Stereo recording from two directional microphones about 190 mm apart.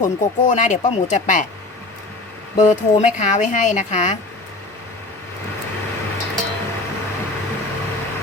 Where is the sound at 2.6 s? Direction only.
40° left (ahead or behind).